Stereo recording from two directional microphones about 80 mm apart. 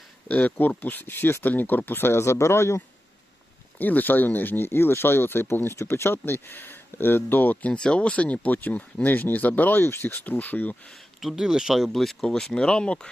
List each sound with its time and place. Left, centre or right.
0.3 s speech: centre; by 2.8 s left
3.8 s speech: left
7.7 s speech: centre
11.2 s speech: centre